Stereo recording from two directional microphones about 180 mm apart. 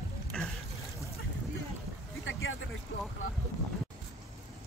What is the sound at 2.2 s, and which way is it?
Boat, 90° left.